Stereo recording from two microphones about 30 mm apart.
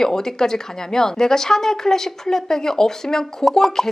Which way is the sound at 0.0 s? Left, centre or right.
Centre.